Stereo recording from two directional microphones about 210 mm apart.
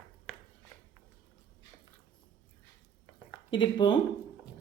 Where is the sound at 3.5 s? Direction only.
20° left (ahead or behind).